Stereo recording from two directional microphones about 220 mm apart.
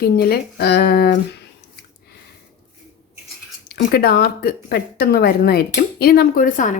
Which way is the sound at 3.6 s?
45° left (ahead or behind).